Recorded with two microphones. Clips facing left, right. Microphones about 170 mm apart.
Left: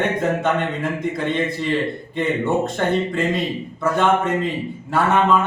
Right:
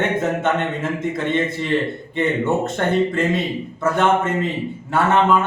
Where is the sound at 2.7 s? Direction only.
Centre (ahead or behind).